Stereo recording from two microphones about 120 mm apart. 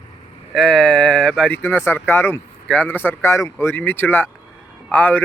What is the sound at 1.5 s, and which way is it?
Speech, 15° left (ahead or behind).